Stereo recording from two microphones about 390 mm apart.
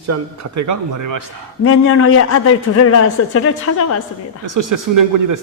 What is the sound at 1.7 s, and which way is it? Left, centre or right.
A man's voice, left.